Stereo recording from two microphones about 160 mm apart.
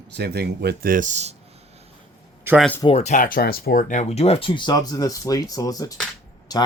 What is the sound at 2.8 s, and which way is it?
Speech, 40° left (ahead or behind).